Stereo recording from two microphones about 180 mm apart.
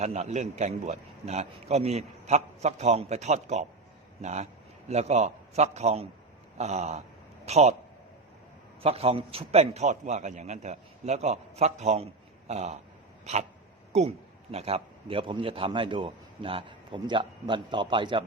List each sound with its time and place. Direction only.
0.0 s a man's voice: 40° right (ahead or behind)
8.8 s a man's voice: 35° right (ahead or behind)
13.9 s a man's voice: 40° right (ahead or behind)